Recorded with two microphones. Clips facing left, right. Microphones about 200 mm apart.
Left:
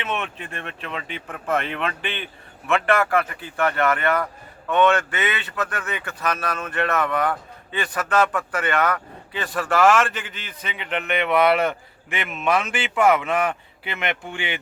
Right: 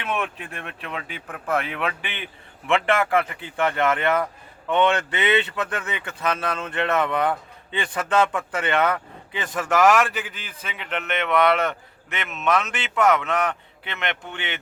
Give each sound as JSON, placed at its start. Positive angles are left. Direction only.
{"t": 0.2, "sound": "a man's voice", "side_deg": 0}